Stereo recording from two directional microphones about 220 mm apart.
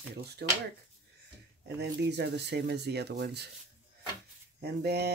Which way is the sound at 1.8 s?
50° right (ahead or behind).